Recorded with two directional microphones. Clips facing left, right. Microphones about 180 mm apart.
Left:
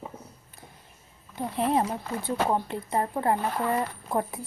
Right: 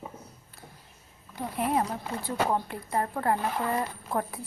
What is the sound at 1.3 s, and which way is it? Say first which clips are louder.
Speech: left 3 dB; 25° left (ahead or behind).